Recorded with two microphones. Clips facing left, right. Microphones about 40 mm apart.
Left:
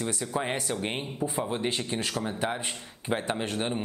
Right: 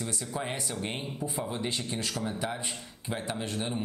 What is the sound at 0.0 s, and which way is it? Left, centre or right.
Speech, left.